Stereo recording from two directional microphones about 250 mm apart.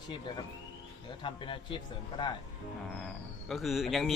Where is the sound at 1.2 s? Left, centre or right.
Centre.